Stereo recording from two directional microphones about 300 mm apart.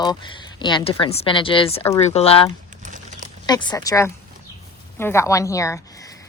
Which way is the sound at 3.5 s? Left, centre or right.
Centre.